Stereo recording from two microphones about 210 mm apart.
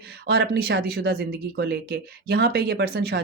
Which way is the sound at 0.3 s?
50° right (ahead or behind).